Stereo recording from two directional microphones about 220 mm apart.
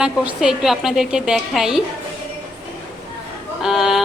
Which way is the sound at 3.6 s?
Centre (ahead or behind).